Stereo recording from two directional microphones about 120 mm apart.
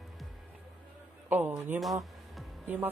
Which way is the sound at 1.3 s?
15° right (ahead or behind).